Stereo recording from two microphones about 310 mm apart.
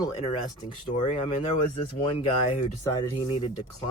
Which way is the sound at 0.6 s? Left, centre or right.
Centre.